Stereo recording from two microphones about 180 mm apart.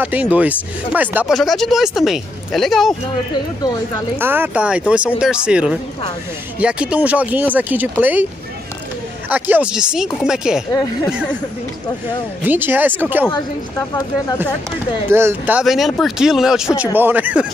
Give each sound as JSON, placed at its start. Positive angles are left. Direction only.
{"t": 0.0, "sound": "speech", "side_deg": -10}
{"t": 4.2, "sound": "speech", "side_deg": -10}
{"t": 9.3, "sound": "speech", "side_deg": -10}
{"t": 12.4, "sound": "speech", "side_deg": -10}
{"t": 13.3, "sound": "speech", "side_deg": 20}
{"t": 15.0, "sound": "speech", "side_deg": -15}